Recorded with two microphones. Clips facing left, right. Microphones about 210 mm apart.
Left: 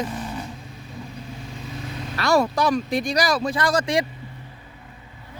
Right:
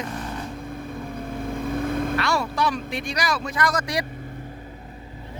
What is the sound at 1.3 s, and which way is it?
Vehicle, 55° right (ahead or behind).